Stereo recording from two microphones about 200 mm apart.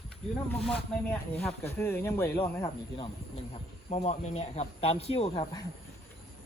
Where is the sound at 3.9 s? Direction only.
35° left (ahead or behind).